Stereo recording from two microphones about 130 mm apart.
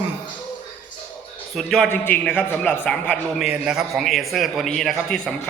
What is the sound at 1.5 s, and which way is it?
Speech, centre (ahead or behind).